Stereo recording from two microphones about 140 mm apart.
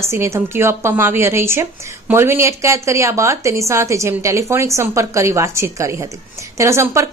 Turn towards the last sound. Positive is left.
turn(degrees=-20)  # may be behind; listen again after turning